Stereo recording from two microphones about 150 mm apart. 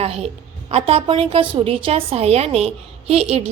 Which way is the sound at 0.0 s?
40° right (ahead or behind).